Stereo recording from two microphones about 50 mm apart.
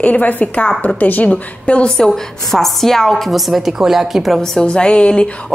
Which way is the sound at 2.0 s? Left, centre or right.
Centre.